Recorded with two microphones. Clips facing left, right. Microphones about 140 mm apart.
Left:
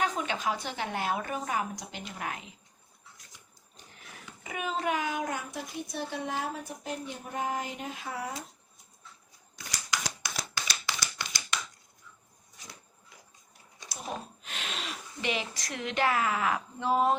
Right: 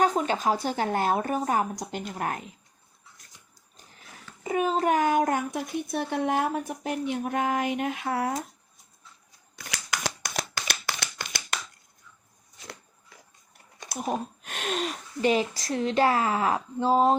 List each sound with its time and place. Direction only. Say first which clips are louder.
0.0 s speech: right 7 dB; 40° right (ahead or behind)
4.4 s a woman's voice: right 8 dB; 40° right (ahead or behind); by 8.3 s 65° right (ahead or behind)
9.7 s a sound: right 3 dB; 60° right (ahead or behind)
13.7 s speech: right 8 dB; 50° right (ahead or behind); by 17.2 s 35° right (ahead or behind)